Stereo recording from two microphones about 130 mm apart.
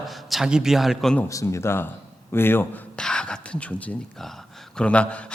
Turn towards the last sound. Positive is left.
turn(degrees=10)  # may be behind; listen again after turning